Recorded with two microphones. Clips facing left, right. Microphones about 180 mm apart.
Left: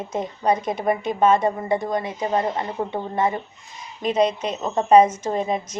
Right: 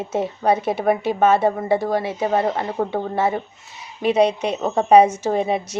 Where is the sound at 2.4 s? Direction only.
55° right (ahead or behind).